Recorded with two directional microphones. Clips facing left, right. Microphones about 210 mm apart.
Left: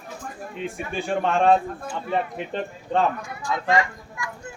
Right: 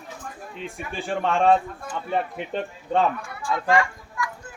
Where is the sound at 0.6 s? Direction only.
Centre (ahead or behind).